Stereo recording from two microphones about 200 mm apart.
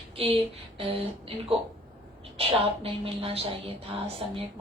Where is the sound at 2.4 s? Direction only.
30° right (ahead or behind).